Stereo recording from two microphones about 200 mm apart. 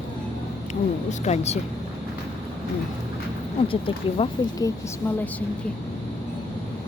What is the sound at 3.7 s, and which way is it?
Speech, 25° left (ahead or behind).